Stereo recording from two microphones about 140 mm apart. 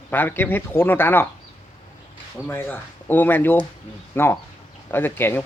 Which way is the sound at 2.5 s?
15° left (ahead or behind).